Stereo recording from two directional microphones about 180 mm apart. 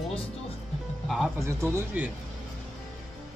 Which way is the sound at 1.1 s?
Centre (ahead or behind).